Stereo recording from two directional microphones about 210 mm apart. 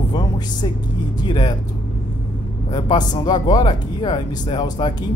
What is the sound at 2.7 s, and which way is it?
Speech, 20° left (ahead or behind).